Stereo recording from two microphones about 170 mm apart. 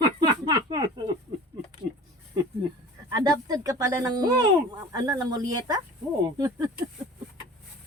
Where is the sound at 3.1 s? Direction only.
20° right (ahead or behind).